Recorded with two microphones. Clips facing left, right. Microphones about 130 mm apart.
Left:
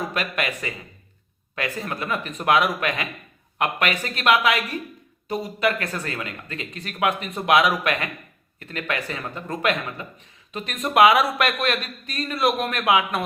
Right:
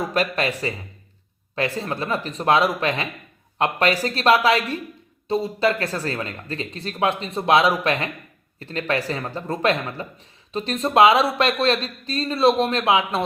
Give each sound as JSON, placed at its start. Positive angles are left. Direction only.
{"t": 0.1, "sound": "speech", "side_deg": -35}